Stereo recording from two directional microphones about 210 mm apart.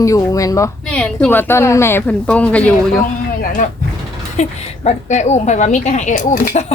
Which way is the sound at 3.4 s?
40° left (ahead or behind).